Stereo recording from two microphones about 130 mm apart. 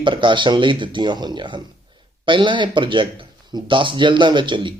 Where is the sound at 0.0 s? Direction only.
40° right (ahead or behind).